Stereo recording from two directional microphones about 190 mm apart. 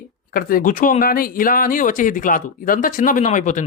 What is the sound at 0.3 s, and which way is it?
Speech, 50° left (ahead or behind).